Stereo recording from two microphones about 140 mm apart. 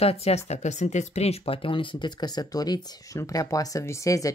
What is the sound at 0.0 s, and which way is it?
Speech, 45° left (ahead or behind).